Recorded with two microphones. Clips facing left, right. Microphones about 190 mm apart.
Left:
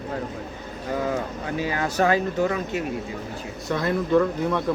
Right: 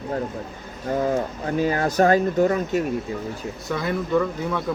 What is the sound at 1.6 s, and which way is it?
Speech, 45° right (ahead or behind).